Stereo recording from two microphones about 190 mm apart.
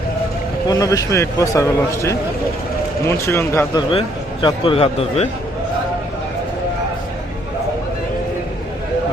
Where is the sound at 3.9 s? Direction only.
25° left (ahead or behind).